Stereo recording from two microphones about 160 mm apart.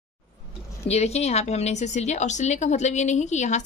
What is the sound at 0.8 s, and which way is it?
Speech, 40° left (ahead or behind).